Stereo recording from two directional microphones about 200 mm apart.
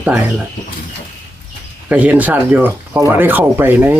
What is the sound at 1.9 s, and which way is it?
Speech, 10° right (ahead or behind).